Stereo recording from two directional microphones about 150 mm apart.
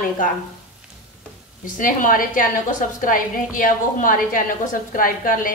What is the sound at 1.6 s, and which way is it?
Speech, 65° left (ahead or behind).